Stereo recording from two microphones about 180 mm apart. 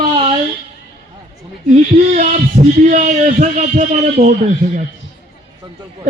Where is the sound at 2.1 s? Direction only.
40° right (ahead or behind).